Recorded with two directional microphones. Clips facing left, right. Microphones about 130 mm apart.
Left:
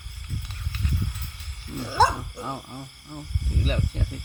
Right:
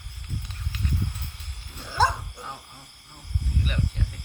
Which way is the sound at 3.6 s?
35° left (ahead or behind).